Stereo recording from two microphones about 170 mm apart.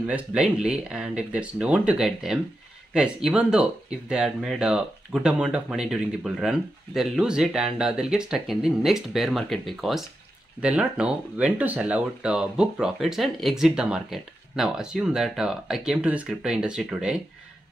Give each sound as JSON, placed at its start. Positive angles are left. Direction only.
{"t": 0.0, "sound": "speech", "side_deg": -5}